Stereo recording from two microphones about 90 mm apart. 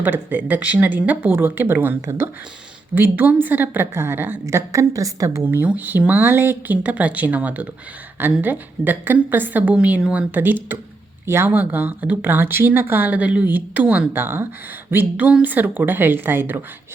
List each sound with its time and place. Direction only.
0.0 s speech: 20° right (ahead or behind)
5.5 s speech: 20° right (ahead or behind)